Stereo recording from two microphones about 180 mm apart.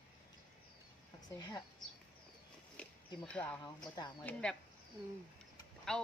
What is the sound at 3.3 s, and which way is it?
A woman's voice, 5° left (ahead or behind).